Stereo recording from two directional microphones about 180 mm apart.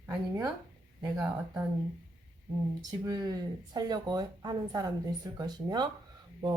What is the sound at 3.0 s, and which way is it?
Speech, 20° right (ahead or behind).